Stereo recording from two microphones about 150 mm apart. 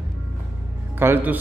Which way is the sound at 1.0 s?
15° right (ahead or behind).